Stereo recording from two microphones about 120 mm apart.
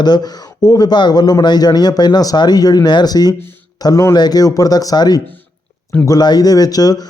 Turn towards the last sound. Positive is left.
turn(degrees=30)  # may be behind; listen again after turning